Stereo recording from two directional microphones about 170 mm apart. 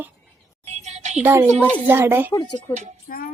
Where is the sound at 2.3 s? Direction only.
20° left (ahead or behind).